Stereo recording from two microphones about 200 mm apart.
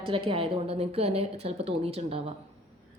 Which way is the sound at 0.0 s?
25° right (ahead or behind).